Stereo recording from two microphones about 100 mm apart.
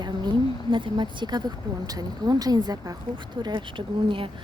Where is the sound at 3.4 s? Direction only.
50° right (ahead or behind).